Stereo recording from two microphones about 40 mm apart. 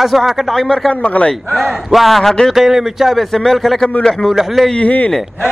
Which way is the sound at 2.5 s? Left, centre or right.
Centre.